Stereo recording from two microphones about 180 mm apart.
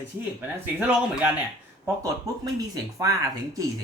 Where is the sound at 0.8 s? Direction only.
10° right (ahead or behind).